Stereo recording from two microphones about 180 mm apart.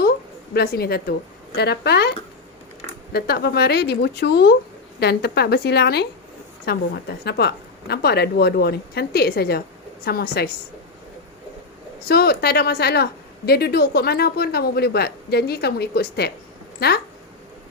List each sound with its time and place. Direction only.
0.5 s a woman's voice: 60° left (ahead or behind)
12.0 s a woman's voice: 60° left (ahead or behind)